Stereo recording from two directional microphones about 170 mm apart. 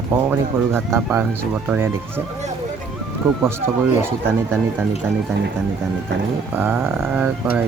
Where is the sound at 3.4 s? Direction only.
15° right (ahead or behind).